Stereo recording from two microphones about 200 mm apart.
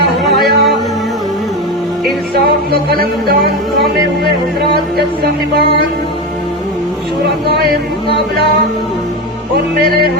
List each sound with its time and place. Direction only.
0.3 s music: centre (ahead or behind)
3.0 s music: 50° right (ahead or behind)